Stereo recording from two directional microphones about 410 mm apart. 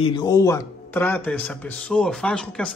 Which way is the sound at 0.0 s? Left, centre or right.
Centre.